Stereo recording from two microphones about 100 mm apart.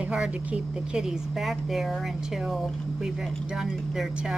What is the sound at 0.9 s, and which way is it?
Speech, 5° right (ahead or behind).